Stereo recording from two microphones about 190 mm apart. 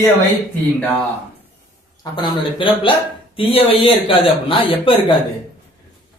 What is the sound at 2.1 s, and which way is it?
A man's voice, 25° left (ahead or behind).